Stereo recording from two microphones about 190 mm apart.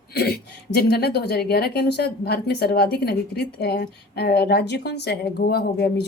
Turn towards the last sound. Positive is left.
turn(degrees=60)  # may be behind; listen again after turning